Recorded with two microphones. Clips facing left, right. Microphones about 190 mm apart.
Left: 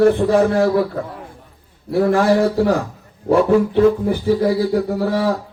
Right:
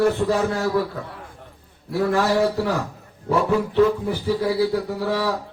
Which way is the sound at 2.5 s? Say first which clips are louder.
Left 7 dB; 50° left (ahead or behind).